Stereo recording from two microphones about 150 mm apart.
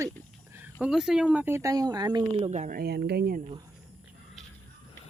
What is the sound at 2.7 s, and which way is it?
Speech, 90° right.